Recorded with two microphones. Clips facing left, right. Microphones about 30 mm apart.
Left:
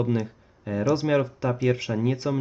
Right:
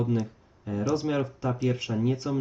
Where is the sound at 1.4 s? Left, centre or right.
Left.